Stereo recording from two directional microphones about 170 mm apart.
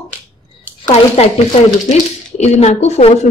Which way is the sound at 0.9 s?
40° left (ahead or behind).